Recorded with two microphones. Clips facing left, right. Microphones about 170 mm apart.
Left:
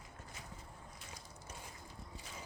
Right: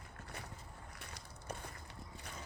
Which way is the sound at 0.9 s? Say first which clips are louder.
Right 1 dB; 65° right (ahead or behind).